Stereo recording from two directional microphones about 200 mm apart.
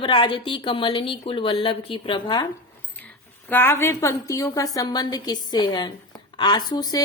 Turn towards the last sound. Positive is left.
turn(degrees=20)  # may be behind; listen again after turning